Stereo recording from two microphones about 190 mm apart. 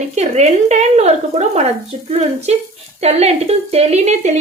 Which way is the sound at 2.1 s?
35° right (ahead or behind).